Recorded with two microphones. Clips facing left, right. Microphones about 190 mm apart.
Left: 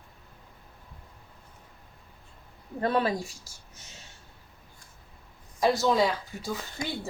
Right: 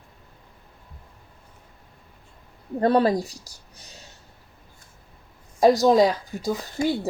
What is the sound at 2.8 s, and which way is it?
Speech, 40° right (ahead or behind).